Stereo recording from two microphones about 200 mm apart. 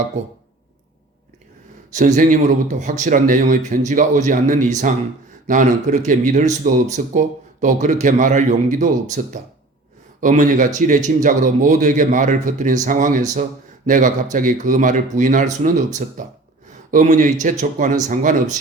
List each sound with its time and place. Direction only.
1.9 s speech: 35° right (ahead or behind)